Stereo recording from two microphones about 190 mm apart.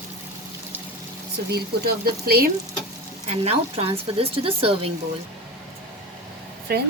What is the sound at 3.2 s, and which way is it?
A woman's voice, 35° right (ahead or behind).